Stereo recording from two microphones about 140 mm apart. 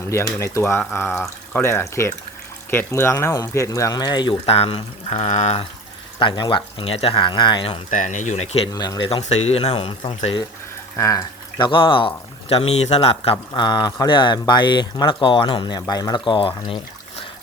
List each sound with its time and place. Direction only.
0.0 s speech: 20° left (ahead or behind)
4.4 s speech: 45° left (ahead or behind)
6.1 s speech: 35° left (ahead or behind)
7.9 s speech: 65° left (ahead or behind)
8.7 s speech: 30° left (ahead or behind)
9.3 s speech: 50° left (ahead or behind)
10.9 s speech: 25° left (ahead or behind); by 13.3 s 45° left (ahead or behind)
13.5 s speech: 30° left (ahead or behind)